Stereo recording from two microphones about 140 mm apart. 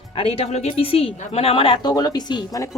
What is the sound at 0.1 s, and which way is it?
A woman's voice, 40° left (ahead or behind).